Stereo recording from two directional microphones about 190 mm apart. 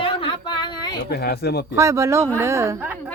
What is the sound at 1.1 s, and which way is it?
Speech, 55° left (ahead or behind).